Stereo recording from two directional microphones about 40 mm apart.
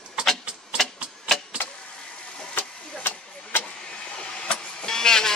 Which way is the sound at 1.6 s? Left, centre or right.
Left.